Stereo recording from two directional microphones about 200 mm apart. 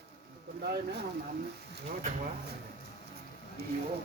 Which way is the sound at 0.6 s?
55° right (ahead or behind).